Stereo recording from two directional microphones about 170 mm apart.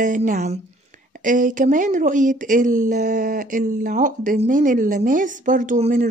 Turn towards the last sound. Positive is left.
turn(degrees=-45)  # may be behind; listen again after turning